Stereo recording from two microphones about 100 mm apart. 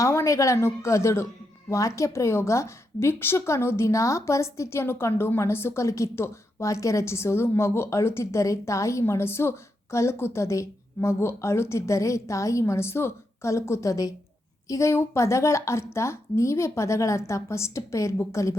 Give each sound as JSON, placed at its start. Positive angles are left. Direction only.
{"t": 0.0, "sound": "a woman's voice", "side_deg": 30}